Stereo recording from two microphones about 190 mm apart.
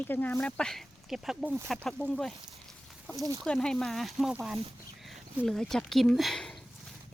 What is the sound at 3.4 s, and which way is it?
Speech, 5° left (ahead or behind).